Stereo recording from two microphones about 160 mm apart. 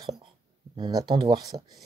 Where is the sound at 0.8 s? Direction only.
25° right (ahead or behind).